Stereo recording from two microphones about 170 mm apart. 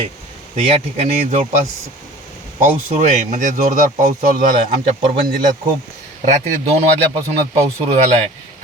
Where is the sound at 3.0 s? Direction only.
45° right (ahead or behind).